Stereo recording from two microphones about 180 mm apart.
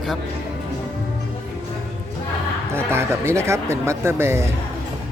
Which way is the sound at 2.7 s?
15° right (ahead or behind).